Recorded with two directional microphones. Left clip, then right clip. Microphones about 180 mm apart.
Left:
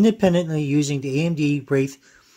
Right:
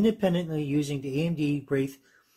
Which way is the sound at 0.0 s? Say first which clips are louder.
Left 7 dB; 45° left (ahead or behind).